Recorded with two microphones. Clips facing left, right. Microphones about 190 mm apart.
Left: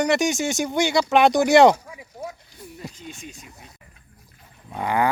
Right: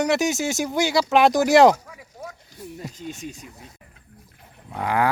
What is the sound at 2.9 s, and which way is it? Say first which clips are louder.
Speech: right 5 dB; 40° right (ahead or behind).